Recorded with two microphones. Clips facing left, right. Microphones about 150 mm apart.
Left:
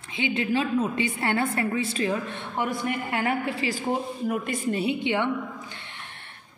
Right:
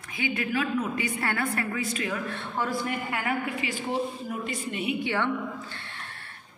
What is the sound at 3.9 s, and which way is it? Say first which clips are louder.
Speech: left 3 dB; 55° left (ahead or behind).